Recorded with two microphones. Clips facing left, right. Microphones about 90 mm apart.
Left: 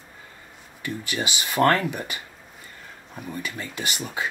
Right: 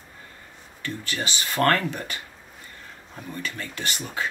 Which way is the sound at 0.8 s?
15° left (ahead or behind).